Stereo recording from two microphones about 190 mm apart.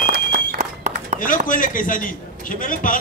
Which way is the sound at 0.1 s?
50° right (ahead or behind).